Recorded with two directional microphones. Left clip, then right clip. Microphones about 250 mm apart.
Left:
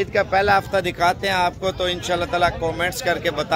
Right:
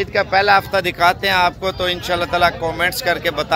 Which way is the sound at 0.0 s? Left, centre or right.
Centre.